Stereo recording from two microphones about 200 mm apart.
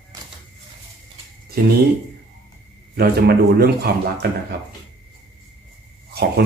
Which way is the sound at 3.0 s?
50° right (ahead or behind).